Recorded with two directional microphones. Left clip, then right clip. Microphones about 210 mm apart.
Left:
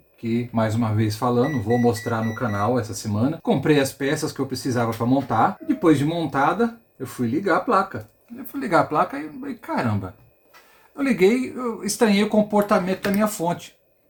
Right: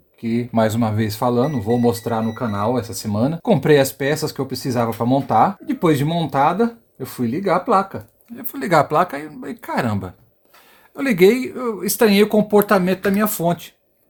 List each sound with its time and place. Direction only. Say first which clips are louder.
0.2 s speech: right 5 dB; 55° right (ahead or behind); by 13.7 s 40° right (ahead or behind)